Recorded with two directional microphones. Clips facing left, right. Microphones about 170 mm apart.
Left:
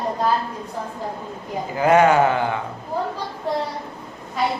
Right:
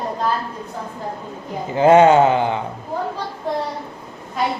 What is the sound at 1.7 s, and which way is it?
Speech, 25° right (ahead or behind).